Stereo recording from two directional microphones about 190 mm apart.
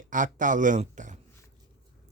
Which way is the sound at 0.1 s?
45° right (ahead or behind).